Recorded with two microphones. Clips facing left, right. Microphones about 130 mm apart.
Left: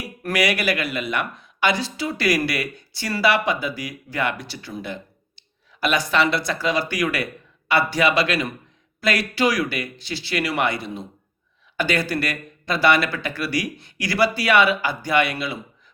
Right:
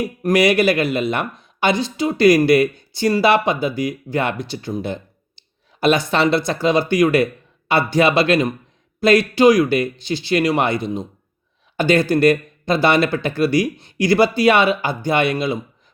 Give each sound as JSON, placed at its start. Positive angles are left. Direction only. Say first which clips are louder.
{"t": 0.2, "sound": "speech", "louder": "right 7 dB", "side_deg": -20}
{"t": 5.4, "sound": "a sound", "louder": "right 5 dB", "side_deg": -25}
{"t": 6.3, "sound": "speech", "louder": "right 6 dB", "side_deg": -25}